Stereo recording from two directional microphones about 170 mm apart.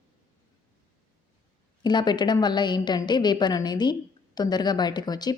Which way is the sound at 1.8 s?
25° left (ahead or behind).